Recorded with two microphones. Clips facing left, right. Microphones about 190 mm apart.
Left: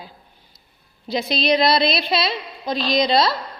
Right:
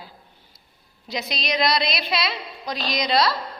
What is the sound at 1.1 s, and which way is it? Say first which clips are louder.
A woman's voice: left 8 dB; 30° left (ahead or behind).